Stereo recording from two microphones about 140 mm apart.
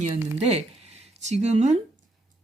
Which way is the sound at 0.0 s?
50° right (ahead or behind).